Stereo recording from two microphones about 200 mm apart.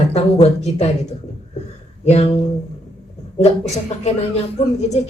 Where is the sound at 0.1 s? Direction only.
30° left (ahead or behind).